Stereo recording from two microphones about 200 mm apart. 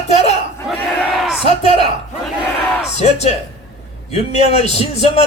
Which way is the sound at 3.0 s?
30° left (ahead or behind).